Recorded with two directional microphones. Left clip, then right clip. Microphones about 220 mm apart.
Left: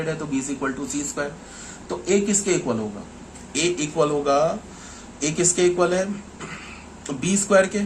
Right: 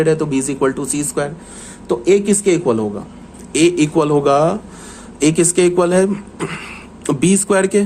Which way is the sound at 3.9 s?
55° right (ahead or behind).